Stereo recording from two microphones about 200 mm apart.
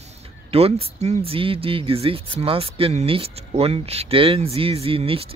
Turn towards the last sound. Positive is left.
turn(degrees=-30)  # may be behind; listen again after turning